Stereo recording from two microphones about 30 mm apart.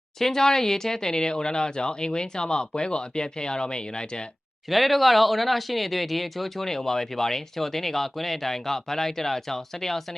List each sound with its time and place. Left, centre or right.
0.2 s speech: centre
4.7 s speech: centre